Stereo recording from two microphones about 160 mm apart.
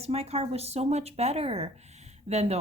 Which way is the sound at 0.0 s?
40° right (ahead or behind).